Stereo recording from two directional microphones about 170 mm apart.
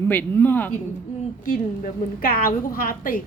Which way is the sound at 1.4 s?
50° left (ahead or behind).